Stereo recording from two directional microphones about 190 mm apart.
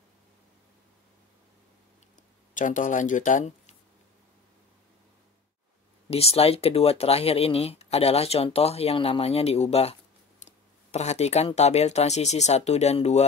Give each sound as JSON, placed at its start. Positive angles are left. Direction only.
{"t": 2.5, "sound": "speech", "side_deg": 40}
{"t": 6.0, "sound": "speech", "side_deg": 30}